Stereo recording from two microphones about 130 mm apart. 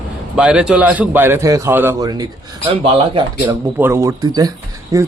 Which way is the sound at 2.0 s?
30° right (ahead or behind).